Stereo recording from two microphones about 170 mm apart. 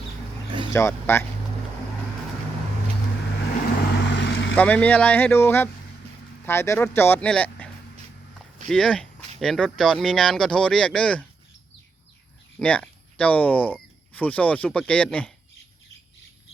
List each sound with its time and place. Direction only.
0.7 s speech: 15° left (ahead or behind)
3.7 s vehicle: 80° left
4.5 s speech: 10° left (ahead or behind)
8.7 s speech: 5° left (ahead or behind)
12.5 s speech: 5° left (ahead or behind)